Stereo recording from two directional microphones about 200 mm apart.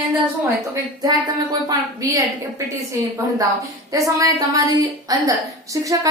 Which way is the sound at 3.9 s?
15° right (ahead or behind).